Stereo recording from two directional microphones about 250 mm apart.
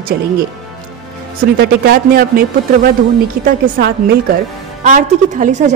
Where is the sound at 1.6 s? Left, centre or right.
Right.